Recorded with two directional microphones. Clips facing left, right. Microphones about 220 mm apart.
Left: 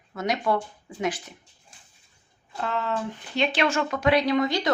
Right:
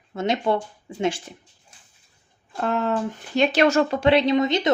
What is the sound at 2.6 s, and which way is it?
Speech, 50° right (ahead or behind).